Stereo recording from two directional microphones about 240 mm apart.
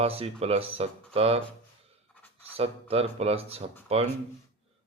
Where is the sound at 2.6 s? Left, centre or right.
Right.